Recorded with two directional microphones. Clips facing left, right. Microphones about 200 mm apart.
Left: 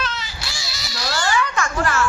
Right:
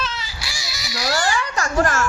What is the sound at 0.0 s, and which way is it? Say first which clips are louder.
Baby cry: left 1 dB; 5° right (ahead or behind).